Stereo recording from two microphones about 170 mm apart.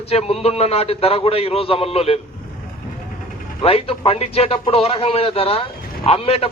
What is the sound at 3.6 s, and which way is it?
A man's voice, 35° left (ahead or behind).